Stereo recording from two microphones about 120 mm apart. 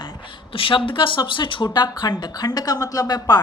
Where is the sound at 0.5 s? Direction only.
50° left (ahead or behind).